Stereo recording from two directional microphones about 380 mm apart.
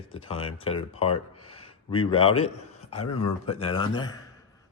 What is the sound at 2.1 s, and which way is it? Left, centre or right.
A man's voice, centre.